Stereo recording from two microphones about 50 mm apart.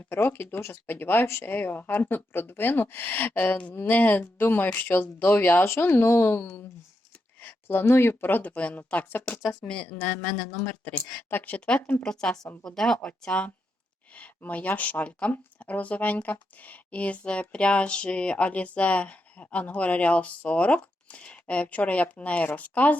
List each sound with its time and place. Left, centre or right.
0.1 s speech: left
5.6 s speech: left
8.3 s speech: left
9.5 s speech: left
12.0 s speech: centre
13.1 s speech: left